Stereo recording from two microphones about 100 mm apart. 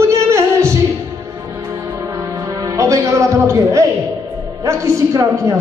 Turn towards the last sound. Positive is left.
turn(degrees=-30)  # may be behind; listen again after turning